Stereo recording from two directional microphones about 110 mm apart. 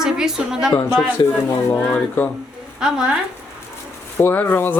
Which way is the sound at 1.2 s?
45° left (ahead or behind).